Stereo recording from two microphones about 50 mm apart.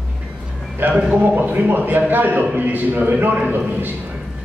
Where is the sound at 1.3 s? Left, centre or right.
Right.